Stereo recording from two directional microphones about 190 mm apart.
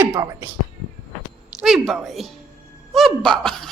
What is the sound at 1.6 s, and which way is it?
A woman's voice, centre (ahead or behind).